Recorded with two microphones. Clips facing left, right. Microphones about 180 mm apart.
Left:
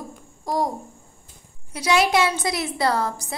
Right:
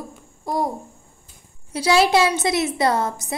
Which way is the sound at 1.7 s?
30° right (ahead or behind).